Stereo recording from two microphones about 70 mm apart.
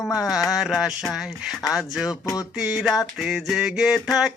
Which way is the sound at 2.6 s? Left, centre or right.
Centre.